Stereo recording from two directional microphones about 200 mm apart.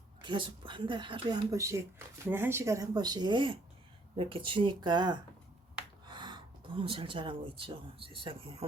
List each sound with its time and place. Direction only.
0.2 s speech: 25° right (ahead or behind)